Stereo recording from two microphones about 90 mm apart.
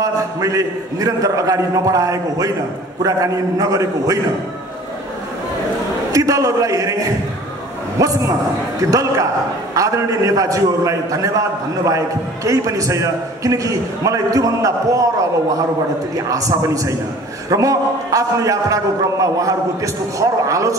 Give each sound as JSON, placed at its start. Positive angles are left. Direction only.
{"t": 0.0, "sound": "a man's voice", "side_deg": -40}
{"t": 6.1, "sound": "a man's voice", "side_deg": -40}
{"t": 16.3, "sound": "a man's voice", "side_deg": -40}